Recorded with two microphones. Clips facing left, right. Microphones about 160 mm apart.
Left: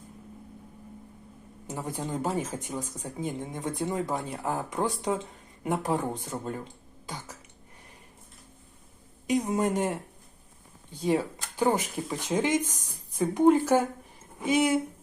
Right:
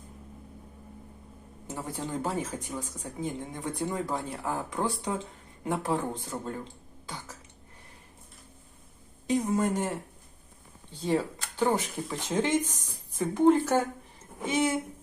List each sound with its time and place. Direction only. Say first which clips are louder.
1.6 s speech: left 2 dB; 15° left (ahead or behind)
9.2 s speech: left 1 dB; 15° left (ahead or behind)
11.0 s speech: left 2 dB; 15° left (ahead or behind)